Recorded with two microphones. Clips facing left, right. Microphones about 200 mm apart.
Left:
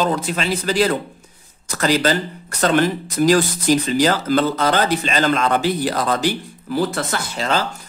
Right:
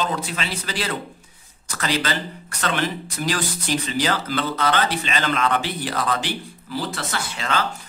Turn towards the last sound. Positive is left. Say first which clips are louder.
# left 4 dB
turn(degrees=40)  # may be behind; listen again after turning